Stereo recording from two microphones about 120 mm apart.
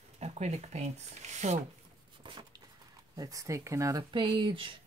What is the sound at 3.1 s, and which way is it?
Speech, 30° right (ahead or behind).